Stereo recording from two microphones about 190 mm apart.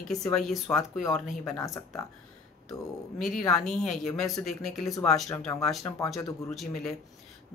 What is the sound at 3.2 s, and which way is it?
Speech, centre (ahead or behind).